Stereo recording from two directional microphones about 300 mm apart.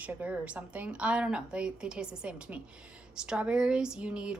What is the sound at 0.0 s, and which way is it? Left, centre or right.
Speech, centre.